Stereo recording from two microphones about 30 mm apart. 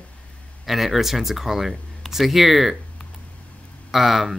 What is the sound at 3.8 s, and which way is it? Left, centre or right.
Speech, centre.